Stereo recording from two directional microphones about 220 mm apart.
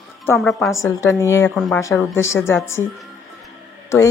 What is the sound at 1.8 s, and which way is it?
Speech, 15° left (ahead or behind).